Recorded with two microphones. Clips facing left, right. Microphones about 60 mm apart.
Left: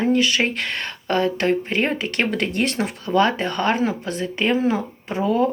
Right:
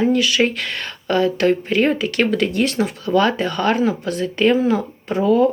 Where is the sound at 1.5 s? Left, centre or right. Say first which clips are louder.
Right 4 dB; left.